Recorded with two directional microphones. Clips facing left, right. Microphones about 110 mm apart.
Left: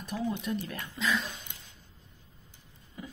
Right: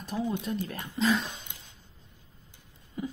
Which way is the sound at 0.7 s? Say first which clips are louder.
Right 5 dB; 35° right (ahead or behind).